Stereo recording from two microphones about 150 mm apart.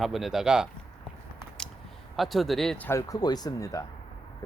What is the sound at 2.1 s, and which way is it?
Speech, centre (ahead or behind).